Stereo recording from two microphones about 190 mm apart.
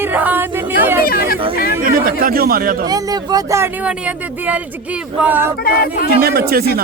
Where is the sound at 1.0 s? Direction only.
50° left (ahead or behind).